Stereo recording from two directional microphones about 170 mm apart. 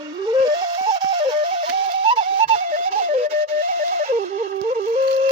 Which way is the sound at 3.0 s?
35° right (ahead or behind).